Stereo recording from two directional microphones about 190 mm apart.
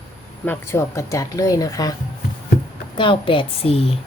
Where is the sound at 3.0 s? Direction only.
25° left (ahead or behind).